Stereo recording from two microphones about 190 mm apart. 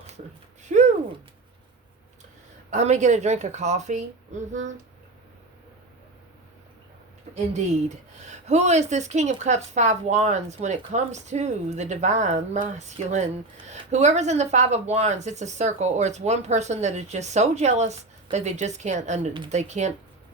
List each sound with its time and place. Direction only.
0.7 s a sound: 40° right (ahead or behind)
2.6 s a woman's voice: 40° right (ahead or behind)
7.5 s a woman's voice: 35° right (ahead or behind)